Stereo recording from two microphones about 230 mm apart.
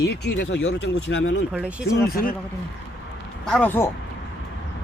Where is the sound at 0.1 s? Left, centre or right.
Left.